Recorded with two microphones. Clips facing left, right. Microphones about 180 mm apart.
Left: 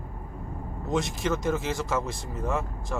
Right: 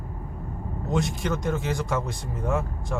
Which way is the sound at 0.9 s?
Centre (ahead or behind).